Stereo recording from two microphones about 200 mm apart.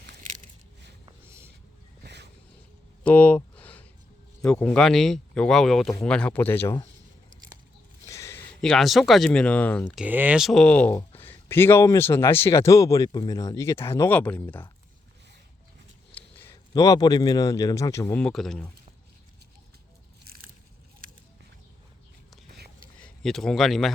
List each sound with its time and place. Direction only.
3.0 s a sound: 5° left (ahead or behind)
4.4 s speech: 5° left (ahead or behind)
8.0 s a sound: 15° left (ahead or behind)
8.7 s speech: centre (ahead or behind)
10.0 s speech: 10° right (ahead or behind); by 14.7 s 10° left (ahead or behind)
16.1 s a man's voice: 10° left (ahead or behind)
18.2 s speech: 5° left (ahead or behind)
23.0 s speech: 5° left (ahead or behind)